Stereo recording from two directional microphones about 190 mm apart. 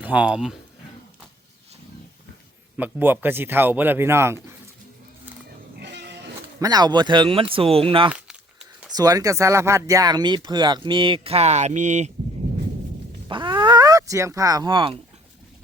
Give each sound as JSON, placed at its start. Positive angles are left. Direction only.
{"t": 0.0, "sound": "speech", "side_deg": -5}
{"t": 2.7, "sound": "speech", "side_deg": -10}
{"t": 5.7, "sound": "music", "side_deg": -65}
{"t": 6.6, "sound": "speech", "side_deg": -20}
{"t": 13.2, "sound": "a sound", "side_deg": -25}